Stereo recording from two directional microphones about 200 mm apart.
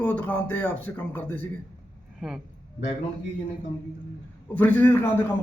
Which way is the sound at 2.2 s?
5° right (ahead or behind).